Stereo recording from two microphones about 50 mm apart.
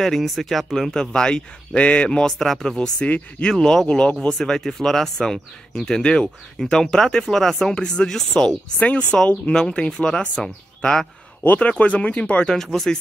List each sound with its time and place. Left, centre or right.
0.0 s speech: centre
0.9 s speech: centre
2.0 s speech: centre
3.1 s speech: left
4.4 s speech: centre
8.7 s speech: left
11.8 s speech: left
12.7 s speech: centre